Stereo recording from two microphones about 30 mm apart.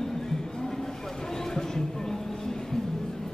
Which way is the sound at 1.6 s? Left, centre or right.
Centre.